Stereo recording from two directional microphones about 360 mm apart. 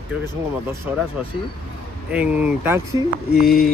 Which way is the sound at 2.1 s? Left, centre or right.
Centre.